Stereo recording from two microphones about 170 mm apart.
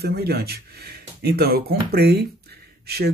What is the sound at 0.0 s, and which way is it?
Speech, 70° right (ahead or behind).